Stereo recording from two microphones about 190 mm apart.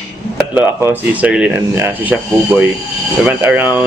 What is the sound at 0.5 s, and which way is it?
Speech, 10° right (ahead or behind).